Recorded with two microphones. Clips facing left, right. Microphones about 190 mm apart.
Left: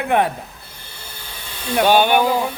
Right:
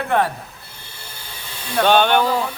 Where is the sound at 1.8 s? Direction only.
10° left (ahead or behind).